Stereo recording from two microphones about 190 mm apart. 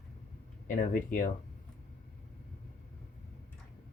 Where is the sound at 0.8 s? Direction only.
45° left (ahead or behind).